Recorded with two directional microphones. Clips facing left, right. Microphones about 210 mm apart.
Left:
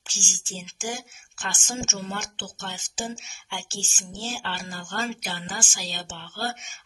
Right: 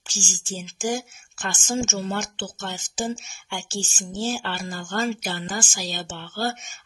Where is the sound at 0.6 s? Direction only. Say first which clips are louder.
Right 7 dB; 40° right (ahead or behind).